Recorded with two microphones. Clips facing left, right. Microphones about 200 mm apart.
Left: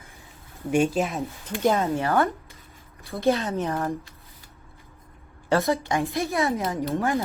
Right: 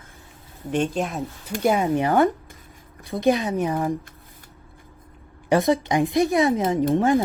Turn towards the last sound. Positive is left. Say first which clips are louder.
# right 6 dB
turn(degrees=-15)  # may be behind; listen again after turning